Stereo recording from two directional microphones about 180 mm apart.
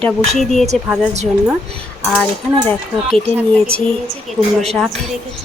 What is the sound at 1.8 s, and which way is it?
A woman's voice, 5° left (ahead or behind).